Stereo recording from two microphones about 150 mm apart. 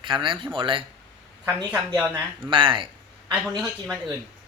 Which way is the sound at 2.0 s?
15° right (ahead or behind).